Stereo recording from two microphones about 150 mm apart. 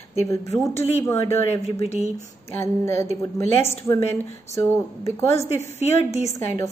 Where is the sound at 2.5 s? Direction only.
15° left (ahead or behind).